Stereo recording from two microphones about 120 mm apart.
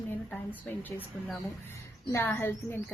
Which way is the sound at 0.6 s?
15° left (ahead or behind).